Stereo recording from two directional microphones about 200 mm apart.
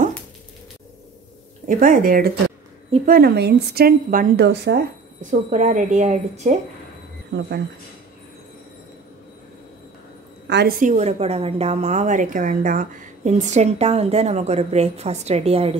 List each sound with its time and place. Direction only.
1.7 s a woman's voice: 45° right (ahead or behind)
4.5 s speech: 55° right (ahead or behind)
5.2 s a woman's voice: 40° right (ahead or behind)
7.3 s speech: 55° right (ahead or behind)
10.4 s a woman's voice: 60° right (ahead or behind)
10.8 s a woman's voice: 35° right (ahead or behind)